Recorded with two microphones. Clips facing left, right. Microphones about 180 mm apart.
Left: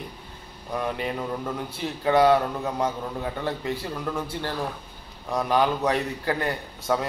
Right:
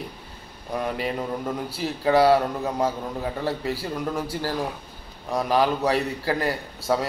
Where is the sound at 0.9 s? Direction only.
10° right (ahead or behind).